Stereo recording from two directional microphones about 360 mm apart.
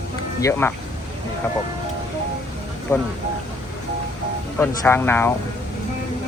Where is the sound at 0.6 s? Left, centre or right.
Centre.